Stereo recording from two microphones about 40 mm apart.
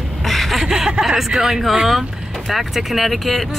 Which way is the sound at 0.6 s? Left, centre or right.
Centre.